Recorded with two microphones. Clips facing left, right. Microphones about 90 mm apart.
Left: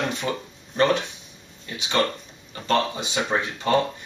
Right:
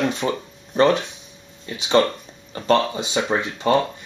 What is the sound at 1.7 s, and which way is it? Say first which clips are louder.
Speech: right 6 dB; 25° right (ahead or behind).